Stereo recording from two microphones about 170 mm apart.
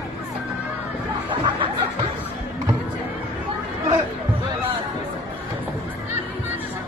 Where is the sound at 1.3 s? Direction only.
30° right (ahead or behind).